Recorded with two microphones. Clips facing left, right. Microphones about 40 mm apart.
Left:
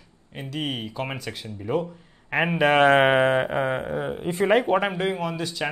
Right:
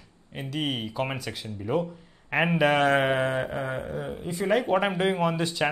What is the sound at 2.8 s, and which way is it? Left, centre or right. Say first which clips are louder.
Speech: left 5 dB; left.